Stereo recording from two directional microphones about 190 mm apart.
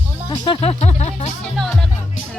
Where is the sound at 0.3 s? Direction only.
25° left (ahead or behind).